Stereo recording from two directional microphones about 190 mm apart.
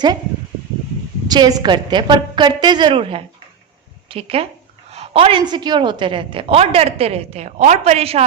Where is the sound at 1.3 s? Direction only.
20° right (ahead or behind).